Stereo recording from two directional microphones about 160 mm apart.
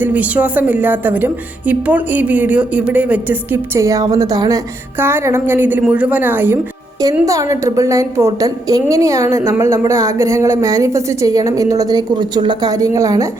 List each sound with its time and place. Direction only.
0.0 s a woman's voice: 10° right (ahead or behind)